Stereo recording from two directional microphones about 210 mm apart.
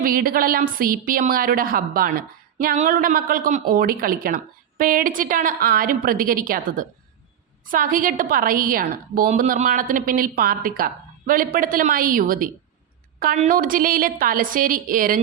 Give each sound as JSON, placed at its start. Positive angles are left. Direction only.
{"t": 0.0, "sound": "a woman's voice", "side_deg": -45}